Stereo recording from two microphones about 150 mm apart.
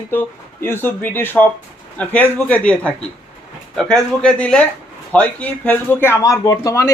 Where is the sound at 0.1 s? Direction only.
15° left (ahead or behind).